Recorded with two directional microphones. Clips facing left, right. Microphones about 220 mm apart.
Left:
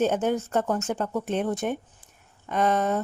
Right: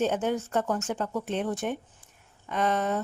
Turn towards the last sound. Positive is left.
turn(degrees=45)  # may be behind; listen again after turning